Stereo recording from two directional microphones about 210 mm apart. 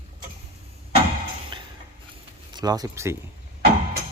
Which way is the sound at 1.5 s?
20° right (ahead or behind).